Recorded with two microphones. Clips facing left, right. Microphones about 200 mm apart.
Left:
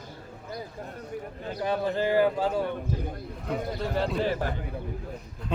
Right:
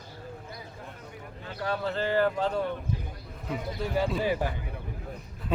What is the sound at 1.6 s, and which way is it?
Speech, 15° left (ahead or behind).